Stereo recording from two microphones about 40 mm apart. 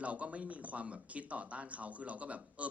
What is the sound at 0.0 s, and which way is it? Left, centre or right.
Speech, right.